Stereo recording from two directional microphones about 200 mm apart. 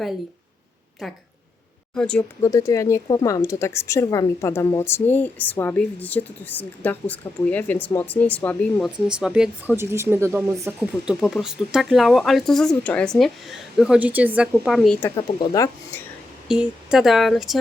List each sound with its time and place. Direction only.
1.0 s speech: centre (ahead or behind)
2.4 s speech: 15° left (ahead or behind)
9.2 s speech: 5° right (ahead or behind)
15.0 s speech: 15° left (ahead or behind)
16.5 s speech: 5° right (ahead or behind)